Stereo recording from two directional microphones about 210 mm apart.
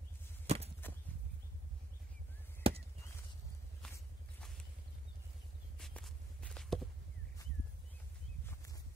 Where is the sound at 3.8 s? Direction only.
5° left (ahead or behind).